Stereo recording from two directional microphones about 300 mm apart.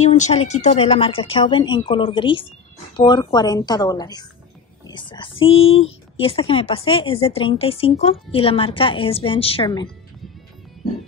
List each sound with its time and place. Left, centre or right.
0.0 s a woman's voice: left
5.7 s speech: left
6.2 s a woman's voice: centre